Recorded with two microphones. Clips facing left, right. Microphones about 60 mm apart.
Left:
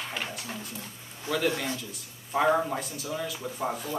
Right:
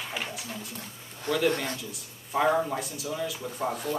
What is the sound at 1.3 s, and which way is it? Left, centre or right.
Speech, right.